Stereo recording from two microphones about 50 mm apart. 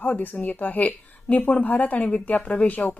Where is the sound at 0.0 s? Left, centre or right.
Left.